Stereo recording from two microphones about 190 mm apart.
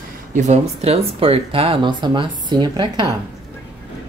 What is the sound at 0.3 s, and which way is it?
Speech, 40° right (ahead or behind).